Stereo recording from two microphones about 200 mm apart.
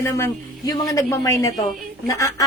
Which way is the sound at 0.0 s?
10° left (ahead or behind).